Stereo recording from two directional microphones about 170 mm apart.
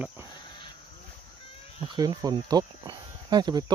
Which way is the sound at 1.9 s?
25° right (ahead or behind).